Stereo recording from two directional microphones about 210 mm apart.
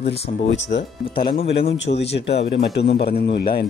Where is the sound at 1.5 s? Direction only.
55° left (ahead or behind).